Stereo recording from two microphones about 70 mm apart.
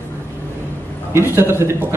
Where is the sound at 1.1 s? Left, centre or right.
Right.